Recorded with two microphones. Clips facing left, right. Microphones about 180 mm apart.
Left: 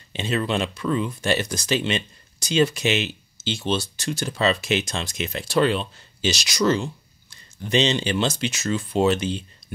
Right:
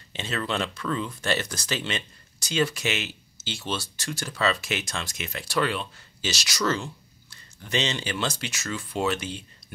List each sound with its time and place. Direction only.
0.1 s speech: 15° left (ahead or behind)